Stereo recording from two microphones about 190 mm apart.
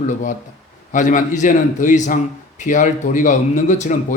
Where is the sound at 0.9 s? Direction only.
40° left (ahead or behind).